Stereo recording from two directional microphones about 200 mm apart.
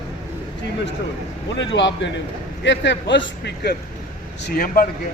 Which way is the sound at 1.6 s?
65° left (ahead or behind).